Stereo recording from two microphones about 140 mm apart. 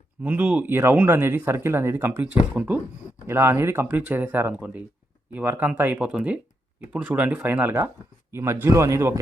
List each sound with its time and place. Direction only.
0.2 s a man's voice: 10° right (ahead or behind)